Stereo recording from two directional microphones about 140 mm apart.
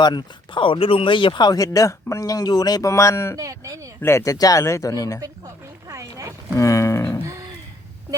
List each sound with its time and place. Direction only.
0.0 s speech: 35° left (ahead or behind)
3.3 s speech: 25° right (ahead or behind)
4.0 s speech: 20° left (ahead or behind)
5.9 s a sound: 20° right (ahead or behind)
6.6 s speech: 20° left (ahead or behind)